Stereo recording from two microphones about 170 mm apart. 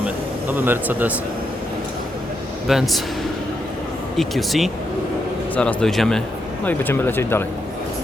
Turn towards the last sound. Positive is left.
turn(degrees=15)  # may be behind; listen again after turning